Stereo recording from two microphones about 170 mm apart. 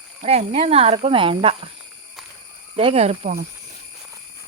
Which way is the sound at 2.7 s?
35° right (ahead or behind).